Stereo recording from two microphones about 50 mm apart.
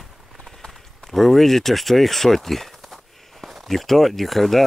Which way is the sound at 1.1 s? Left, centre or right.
Centre.